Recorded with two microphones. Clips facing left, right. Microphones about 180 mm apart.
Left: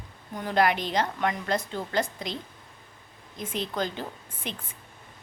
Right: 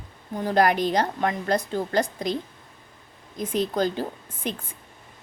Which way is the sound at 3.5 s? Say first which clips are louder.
Right 7 dB; 40° right (ahead or behind).